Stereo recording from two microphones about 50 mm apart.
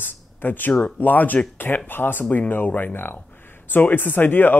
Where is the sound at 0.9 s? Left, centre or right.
Left.